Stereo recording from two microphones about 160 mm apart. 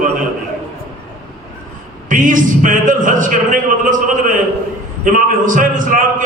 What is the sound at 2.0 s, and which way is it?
A man's voice, 55° right (ahead or behind).